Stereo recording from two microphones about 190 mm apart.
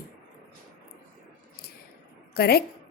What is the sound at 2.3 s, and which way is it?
Speech, 55° left (ahead or behind).